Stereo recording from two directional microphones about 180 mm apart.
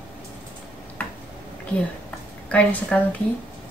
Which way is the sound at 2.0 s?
10° left (ahead or behind).